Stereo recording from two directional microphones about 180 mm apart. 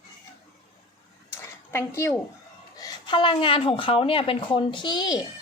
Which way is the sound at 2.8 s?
25° left (ahead or behind).